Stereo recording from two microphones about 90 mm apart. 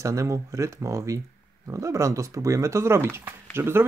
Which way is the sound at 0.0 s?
35° right (ahead or behind).